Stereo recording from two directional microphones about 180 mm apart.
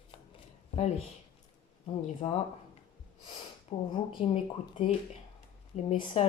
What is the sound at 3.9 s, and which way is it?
Speech, 30° left (ahead or behind).